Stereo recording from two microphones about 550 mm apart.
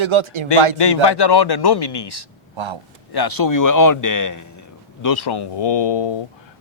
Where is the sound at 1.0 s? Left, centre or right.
Left.